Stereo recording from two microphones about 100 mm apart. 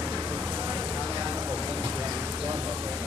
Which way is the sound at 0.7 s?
20° right (ahead or behind).